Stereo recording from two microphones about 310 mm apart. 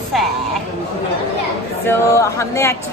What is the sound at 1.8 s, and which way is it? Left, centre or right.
Speech, centre.